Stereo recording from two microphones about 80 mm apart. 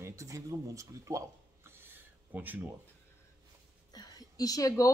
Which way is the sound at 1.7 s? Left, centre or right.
Right.